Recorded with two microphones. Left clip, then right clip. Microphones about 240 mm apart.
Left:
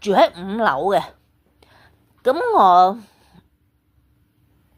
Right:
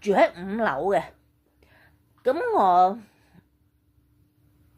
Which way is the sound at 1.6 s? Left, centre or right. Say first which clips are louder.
Left 6 dB; centre.